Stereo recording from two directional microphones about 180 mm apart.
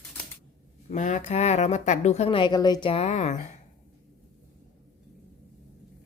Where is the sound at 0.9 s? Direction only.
45° left (ahead or behind).